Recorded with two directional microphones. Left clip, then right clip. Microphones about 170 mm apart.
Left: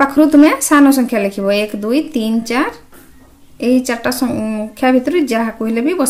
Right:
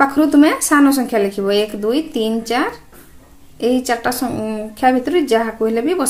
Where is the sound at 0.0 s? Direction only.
35° left (ahead or behind).